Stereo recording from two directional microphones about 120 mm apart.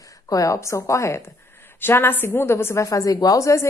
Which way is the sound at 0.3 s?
25° left (ahead or behind).